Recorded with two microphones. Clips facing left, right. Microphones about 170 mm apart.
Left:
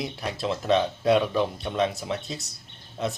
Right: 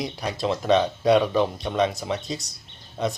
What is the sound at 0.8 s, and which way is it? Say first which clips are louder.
Speech: right 3 dB; 35° right (ahead or behind).